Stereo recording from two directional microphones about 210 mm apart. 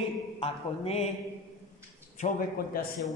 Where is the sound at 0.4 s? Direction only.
30° left (ahead or behind).